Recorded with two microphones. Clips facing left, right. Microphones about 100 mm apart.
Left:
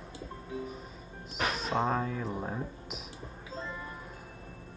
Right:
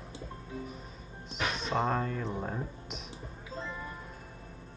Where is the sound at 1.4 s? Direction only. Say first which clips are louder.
Left 1 dB; 5° left (ahead or behind).